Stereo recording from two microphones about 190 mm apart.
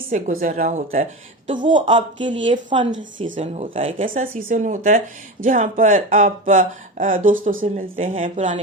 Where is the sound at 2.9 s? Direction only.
85° right.